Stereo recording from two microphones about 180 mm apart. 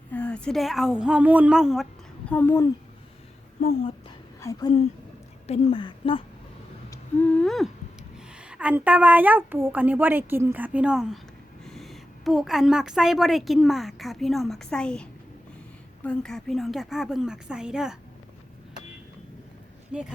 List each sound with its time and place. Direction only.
0.1 s speech: 5° left (ahead or behind)
2.3 s a woman's voice: 10° left (ahead or behind)
4.4 s a woman's voice: 15° left (ahead or behind)
5.5 s speech: 30° left (ahead or behind)
7.2 s a woman's voice: 5° left (ahead or behind)
16.0 s speech: 5° left (ahead or behind)
19.9 s speech: 5° right (ahead or behind)